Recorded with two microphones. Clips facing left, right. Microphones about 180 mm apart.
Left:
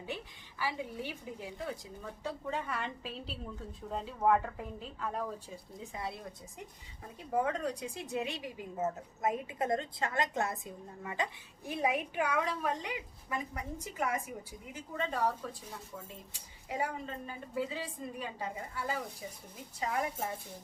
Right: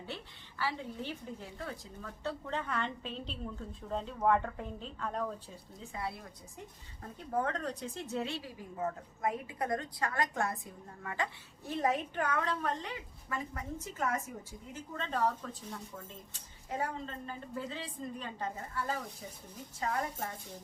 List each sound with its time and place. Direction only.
0.6 s a woman's voice: 15° left (ahead or behind)
5.8 s a woman's voice: 20° left (ahead or behind)
7.2 s a woman's voice: 10° left (ahead or behind)